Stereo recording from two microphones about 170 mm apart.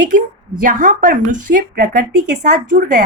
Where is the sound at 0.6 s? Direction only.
50° right (ahead or behind).